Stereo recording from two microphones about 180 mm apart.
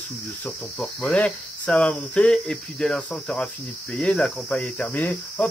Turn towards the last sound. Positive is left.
turn(degrees=10)  # may be behind; listen again after turning